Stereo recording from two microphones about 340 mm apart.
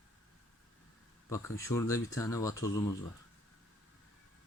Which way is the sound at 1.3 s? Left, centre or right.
Centre.